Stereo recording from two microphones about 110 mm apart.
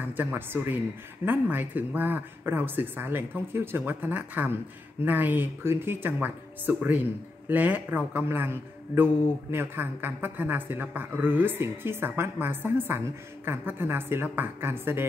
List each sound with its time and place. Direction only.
0.1 s a man's voice: 20° right (ahead or behind)